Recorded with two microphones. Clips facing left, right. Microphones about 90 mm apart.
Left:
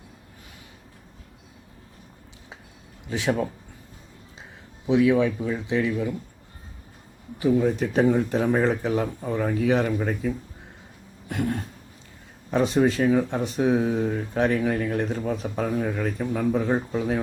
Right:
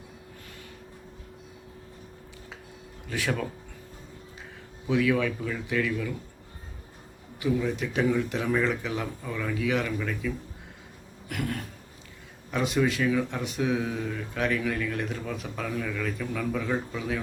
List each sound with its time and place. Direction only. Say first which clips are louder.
3.1 s speech: left 5 dB; 25° left (ahead or behind)
4.9 s speech: left 5 dB; 25° left (ahead or behind)
7.3 s speech: left 6 dB; 35° left (ahead or behind)
11.3 s a sound: left 5 dB; 30° left (ahead or behind)
12.5 s speech: left 5 dB; 35° left (ahead or behind)